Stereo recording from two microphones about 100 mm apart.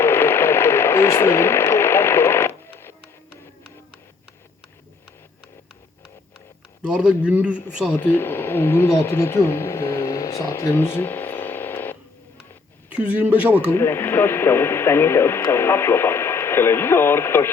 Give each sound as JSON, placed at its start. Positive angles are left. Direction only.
{"t": 0.0, "sound": "radio", "side_deg": 25}
{"t": 6.8, "sound": "a man's voice", "side_deg": -10}
{"t": 7.9, "sound": "speech", "side_deg": 20}
{"t": 13.1, "sound": "a man's voice", "side_deg": -15}
{"t": 13.6, "sound": "speech", "side_deg": 25}